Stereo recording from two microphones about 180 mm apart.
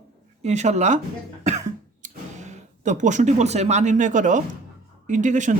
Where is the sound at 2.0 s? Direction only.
40° right (ahead or behind).